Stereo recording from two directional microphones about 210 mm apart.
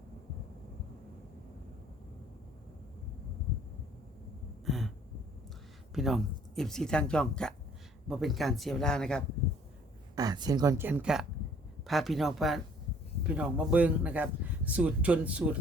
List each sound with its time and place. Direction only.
4.6 s a sound: centre (ahead or behind)
5.9 s speech: centre (ahead or behind)
10.2 s speech: 20° right (ahead or behind)